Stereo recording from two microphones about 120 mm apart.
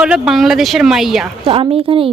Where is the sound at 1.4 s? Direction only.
50° right (ahead or behind).